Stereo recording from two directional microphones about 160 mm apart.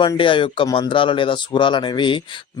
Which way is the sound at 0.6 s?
20° left (ahead or behind).